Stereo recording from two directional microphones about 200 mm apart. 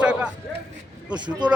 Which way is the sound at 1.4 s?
20° right (ahead or behind).